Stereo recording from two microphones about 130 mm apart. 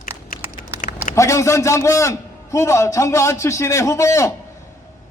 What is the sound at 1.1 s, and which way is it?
A man's voice, 25° left (ahead or behind).